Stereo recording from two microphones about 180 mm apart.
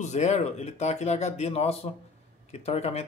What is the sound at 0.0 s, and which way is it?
Speech, 40° left (ahead or behind).